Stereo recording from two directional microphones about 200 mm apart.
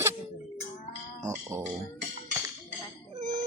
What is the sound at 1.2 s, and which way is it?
Speech, 15° right (ahead or behind).